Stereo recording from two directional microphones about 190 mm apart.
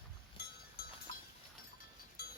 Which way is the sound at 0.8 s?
55° left (ahead or behind).